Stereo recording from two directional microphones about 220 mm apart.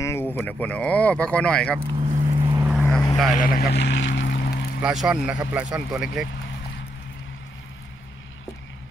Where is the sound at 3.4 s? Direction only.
45° left (ahead or behind).